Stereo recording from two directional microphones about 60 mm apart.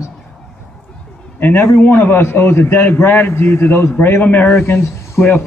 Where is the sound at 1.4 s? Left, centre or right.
Left.